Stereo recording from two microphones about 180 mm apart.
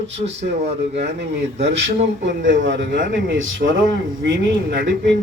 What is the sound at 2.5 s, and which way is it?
Speech, 90° right.